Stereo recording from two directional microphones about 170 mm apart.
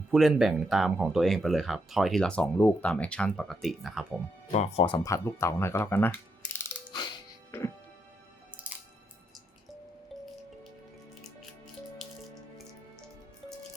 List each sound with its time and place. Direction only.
0.1 s speech: centre (ahead or behind)
4.5 s speech: 35° left (ahead or behind)
5.0 s speech: 15° left (ahead or behind)
8.7 s music: 10° right (ahead or behind)
11.9 s music: centre (ahead or behind)